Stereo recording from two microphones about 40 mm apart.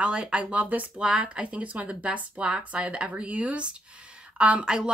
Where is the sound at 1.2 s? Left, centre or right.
Right.